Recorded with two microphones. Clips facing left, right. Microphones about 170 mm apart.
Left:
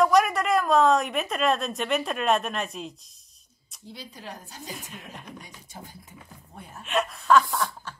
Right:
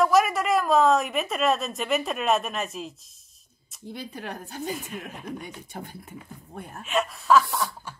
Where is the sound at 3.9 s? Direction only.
55° right (ahead or behind).